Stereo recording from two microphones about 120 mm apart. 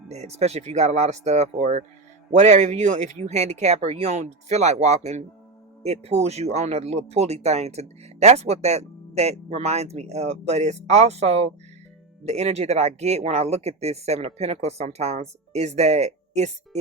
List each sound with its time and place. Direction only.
0.1 s speech: 65° right (ahead or behind)